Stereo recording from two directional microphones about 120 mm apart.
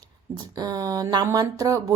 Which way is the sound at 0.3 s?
35° right (ahead or behind).